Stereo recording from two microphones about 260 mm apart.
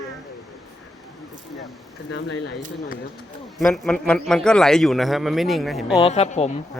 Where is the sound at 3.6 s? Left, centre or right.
Centre.